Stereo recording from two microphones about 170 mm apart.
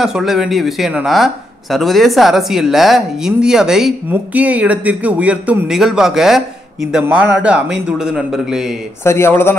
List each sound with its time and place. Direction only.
0.0 s speech: centre (ahead or behind)
9.0 s speech: 15° left (ahead or behind)